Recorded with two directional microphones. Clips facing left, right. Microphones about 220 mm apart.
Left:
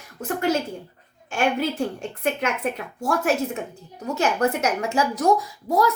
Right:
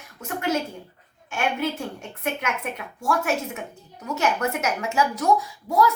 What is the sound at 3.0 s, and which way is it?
A woman's voice, 35° left (ahead or behind).